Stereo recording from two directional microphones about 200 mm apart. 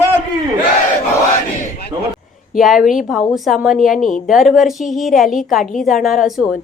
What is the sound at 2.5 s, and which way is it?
A woman's voice, centre (ahead or behind).